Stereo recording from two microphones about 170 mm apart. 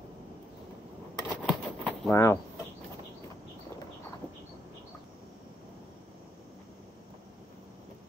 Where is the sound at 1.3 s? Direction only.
5° right (ahead or behind).